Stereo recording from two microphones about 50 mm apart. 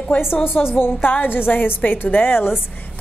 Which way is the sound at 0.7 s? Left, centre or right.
Left.